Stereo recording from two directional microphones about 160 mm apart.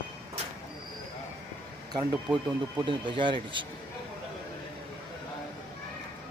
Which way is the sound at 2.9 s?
30° right (ahead or behind).